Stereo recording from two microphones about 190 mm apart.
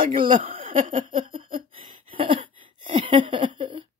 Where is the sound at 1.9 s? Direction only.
25° right (ahead or behind).